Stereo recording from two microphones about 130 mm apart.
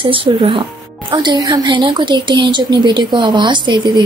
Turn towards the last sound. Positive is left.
turn(degrees=-35)  # may be behind; listen again after turning